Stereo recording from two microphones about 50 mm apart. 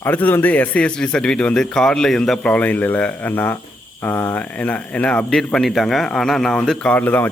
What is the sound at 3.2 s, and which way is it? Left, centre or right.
Speech, left.